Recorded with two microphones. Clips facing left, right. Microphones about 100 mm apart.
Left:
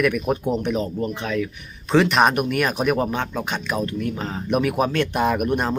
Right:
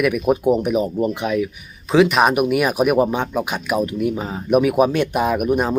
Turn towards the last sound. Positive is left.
turn(degrees=-5)  # may be behind; listen again after turning